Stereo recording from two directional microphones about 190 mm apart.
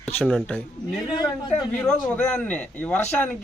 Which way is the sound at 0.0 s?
Centre (ahead or behind).